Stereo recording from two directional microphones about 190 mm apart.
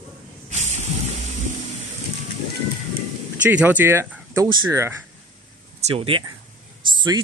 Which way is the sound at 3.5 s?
10° right (ahead or behind).